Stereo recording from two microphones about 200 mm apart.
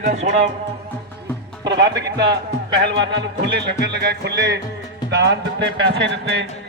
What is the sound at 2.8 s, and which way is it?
A man's voice, 60° right (ahead or behind).